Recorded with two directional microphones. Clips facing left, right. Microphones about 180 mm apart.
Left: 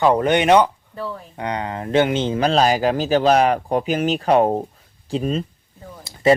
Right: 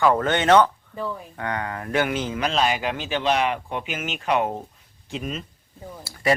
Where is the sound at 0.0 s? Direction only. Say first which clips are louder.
Left 4 dB; 20° left (ahead or behind).